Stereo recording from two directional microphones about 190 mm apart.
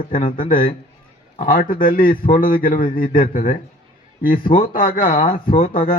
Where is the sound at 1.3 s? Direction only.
45° left (ahead or behind).